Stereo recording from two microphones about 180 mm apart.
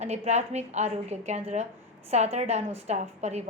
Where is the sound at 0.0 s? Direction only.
35° right (ahead or behind).